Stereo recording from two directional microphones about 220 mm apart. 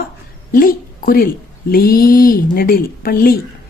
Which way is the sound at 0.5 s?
40° left (ahead or behind).